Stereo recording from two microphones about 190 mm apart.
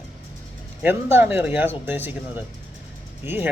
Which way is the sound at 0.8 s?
10° right (ahead or behind).